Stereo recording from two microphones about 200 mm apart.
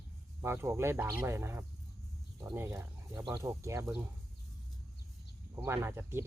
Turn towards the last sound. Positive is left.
turn(degrees=-10)  # may be behind; listen again after turning